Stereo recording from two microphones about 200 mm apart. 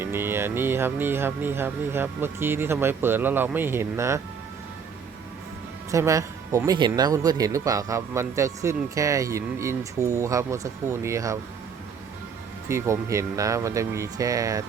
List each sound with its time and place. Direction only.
0.0 s speech: 10° right (ahead or behind)
5.9 s speech: 15° right (ahead or behind)
12.6 s speech: 15° right (ahead or behind)